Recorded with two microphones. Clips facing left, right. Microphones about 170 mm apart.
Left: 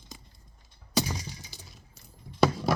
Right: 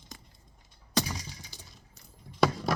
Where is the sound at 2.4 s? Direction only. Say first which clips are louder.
Left 2 dB; 5° left (ahead or behind).